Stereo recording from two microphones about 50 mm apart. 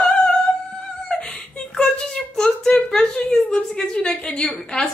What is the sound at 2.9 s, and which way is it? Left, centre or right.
A woman's voice, centre.